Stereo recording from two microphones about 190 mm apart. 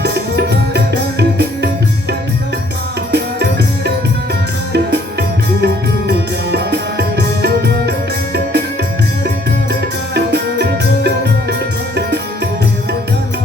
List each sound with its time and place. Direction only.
0.0 s tabla: 60° right (ahead or behind)
1.2 s music: 60° right (ahead or behind)
5.5 s music: 60° right (ahead or behind)
10.2 s music: 60° right (ahead or behind)